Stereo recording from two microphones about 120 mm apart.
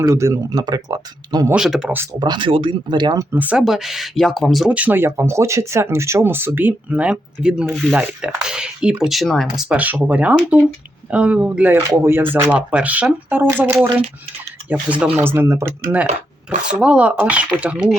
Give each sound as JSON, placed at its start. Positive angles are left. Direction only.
{"t": 0.0, "sound": "speech", "side_deg": -25}
{"t": 0.6, "sound": "speech", "side_deg": -35}
{"t": 1.5, "sound": "speech", "side_deg": -5}
{"t": 2.1, "sound": "speech", "side_deg": -35}
{"t": 3.3, "sound": "speech", "side_deg": -15}
{"t": 3.6, "sound": "speech", "side_deg": 0}
{"t": 9.6, "sound": "speech", "side_deg": -15}
{"t": 11.8, "sound": "speech", "side_deg": -25}
{"t": 14.7, "sound": "speech", "side_deg": -10}